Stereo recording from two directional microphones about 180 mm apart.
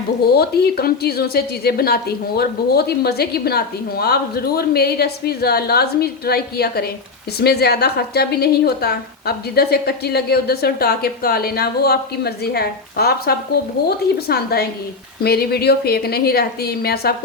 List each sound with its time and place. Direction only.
0.3 s a woman's voice: 60° left (ahead or behind)